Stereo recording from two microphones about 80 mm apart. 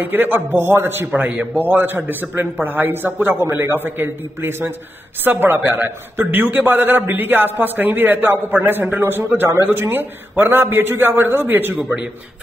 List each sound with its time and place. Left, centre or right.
0.0 s a man's voice: right